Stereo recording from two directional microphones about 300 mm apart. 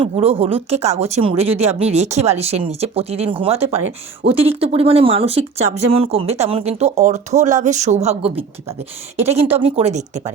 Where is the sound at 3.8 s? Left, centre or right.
Right.